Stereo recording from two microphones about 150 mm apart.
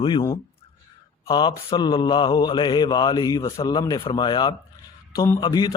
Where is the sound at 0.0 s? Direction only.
35° left (ahead or behind).